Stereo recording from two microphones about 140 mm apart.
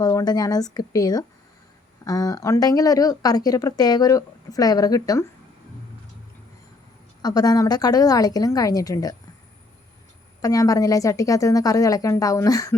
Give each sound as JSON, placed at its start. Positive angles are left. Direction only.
{"t": 0.0, "sound": "speech", "side_deg": 25}
{"t": 7.2, "sound": "speech", "side_deg": 25}
{"t": 10.4, "sound": "speech", "side_deg": 25}